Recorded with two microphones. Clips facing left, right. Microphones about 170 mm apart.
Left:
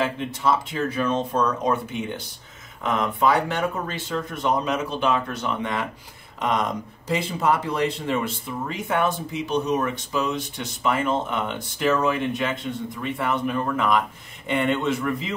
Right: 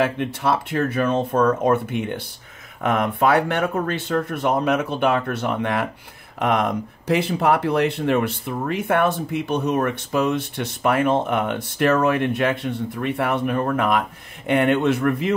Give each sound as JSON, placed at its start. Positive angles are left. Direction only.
{"t": 0.0, "sound": "speech", "side_deg": -60}